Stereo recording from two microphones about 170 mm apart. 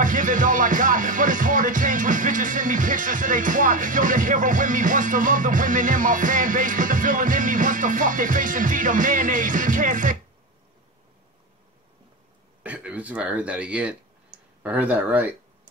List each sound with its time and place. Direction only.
0.0 s music: 50° right (ahead or behind)
12.6 s speech: 10° right (ahead or behind)